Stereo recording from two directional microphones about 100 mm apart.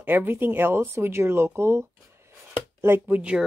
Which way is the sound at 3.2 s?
10° right (ahead or behind).